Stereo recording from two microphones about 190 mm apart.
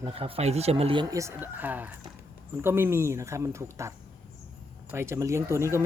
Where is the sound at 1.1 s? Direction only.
15° right (ahead or behind).